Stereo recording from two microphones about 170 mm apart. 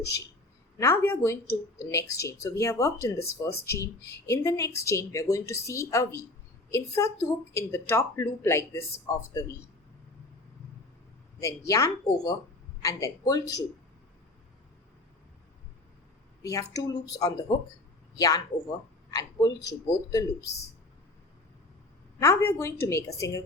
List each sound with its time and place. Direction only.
0.0 s a woman's voice: 20° left (ahead or behind)
11.3 s speech: 20° left (ahead or behind)
16.4 s speech: 20° left (ahead or behind)
22.2 s a woman's voice: 15° left (ahead or behind)